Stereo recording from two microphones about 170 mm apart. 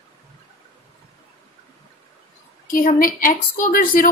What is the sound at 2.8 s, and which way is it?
A woman's voice, 50° left (ahead or behind).